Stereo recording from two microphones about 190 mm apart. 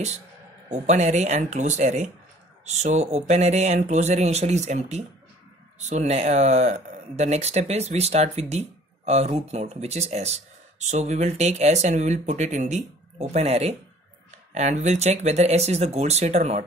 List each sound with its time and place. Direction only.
0.7 s speech: 40° right (ahead or behind)